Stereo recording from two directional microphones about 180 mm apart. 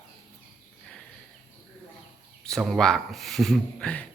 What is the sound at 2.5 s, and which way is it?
Speech, centre (ahead or behind).